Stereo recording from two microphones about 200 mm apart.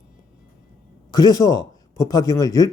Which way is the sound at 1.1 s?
20° left (ahead or behind).